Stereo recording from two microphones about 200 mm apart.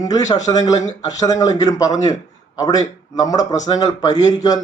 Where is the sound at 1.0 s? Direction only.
20° left (ahead or behind).